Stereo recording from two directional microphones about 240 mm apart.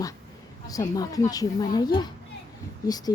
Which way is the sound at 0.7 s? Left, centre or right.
Centre.